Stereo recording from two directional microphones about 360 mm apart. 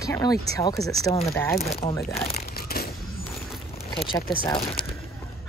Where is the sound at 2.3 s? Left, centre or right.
Left.